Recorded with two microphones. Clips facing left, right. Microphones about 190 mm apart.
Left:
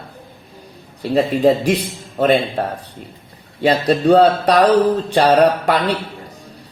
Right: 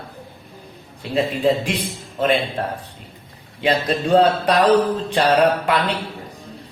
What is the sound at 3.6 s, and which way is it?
A man's voice, 40° left (ahead or behind).